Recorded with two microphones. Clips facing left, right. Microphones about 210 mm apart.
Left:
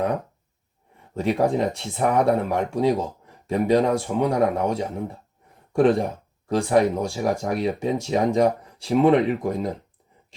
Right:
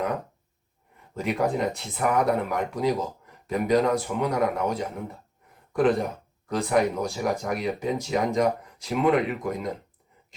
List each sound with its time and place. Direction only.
1.1 s speech: 30° left (ahead or behind)